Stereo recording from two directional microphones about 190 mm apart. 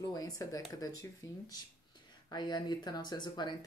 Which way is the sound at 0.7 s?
20° left (ahead or behind).